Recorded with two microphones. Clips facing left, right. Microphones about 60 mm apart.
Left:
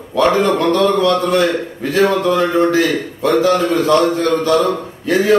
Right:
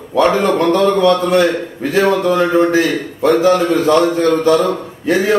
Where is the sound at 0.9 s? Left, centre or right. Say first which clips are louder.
Right 2 dB; right.